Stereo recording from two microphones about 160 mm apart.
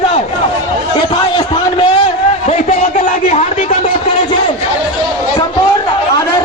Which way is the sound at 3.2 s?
45° left (ahead or behind).